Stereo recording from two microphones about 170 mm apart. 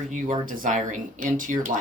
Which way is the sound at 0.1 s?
50° right (ahead or behind).